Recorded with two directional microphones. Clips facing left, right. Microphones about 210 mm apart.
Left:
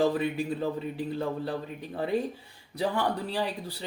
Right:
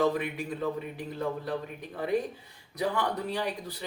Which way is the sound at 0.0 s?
30° left (ahead or behind).